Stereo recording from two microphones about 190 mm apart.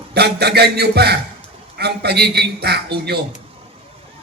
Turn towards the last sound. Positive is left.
turn(degrees=-60)  # may be behind; listen again after turning